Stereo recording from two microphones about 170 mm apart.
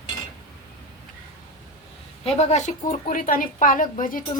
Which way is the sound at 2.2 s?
35° left (ahead or behind).